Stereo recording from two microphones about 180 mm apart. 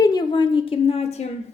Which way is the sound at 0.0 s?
20° left (ahead or behind).